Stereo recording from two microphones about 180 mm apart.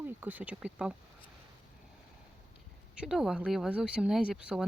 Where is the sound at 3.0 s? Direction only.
Centre (ahead or behind).